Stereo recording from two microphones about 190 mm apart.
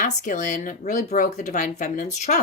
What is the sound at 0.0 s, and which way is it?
Speech, 40° left (ahead or behind).